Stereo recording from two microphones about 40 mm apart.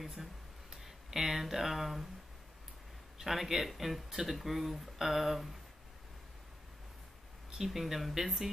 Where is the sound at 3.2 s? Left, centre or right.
Centre.